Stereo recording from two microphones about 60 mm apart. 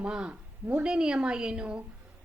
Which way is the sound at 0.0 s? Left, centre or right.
Centre.